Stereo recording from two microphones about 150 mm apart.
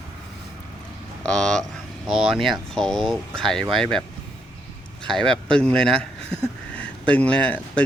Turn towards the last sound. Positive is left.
turn(degrees=10)  # may be behind; listen again after turning